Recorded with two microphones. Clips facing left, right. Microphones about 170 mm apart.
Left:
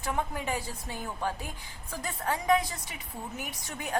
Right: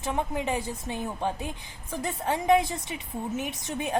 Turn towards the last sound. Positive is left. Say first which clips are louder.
# right 7 dB
turn(degrees=-25)  # may be behind; listen again after turning